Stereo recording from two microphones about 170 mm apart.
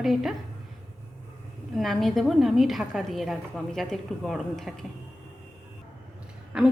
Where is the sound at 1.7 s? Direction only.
Centre (ahead or behind).